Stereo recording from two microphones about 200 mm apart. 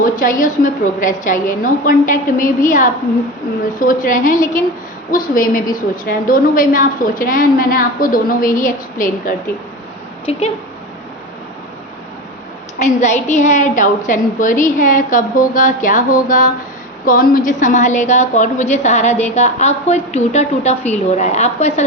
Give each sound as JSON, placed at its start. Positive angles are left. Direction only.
{"t": 0.0, "sound": "a woman's voice", "side_deg": 40}
{"t": 12.8, "sound": "a woman's voice", "side_deg": 35}